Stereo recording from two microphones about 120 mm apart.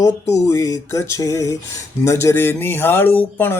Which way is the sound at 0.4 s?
25° left (ahead or behind).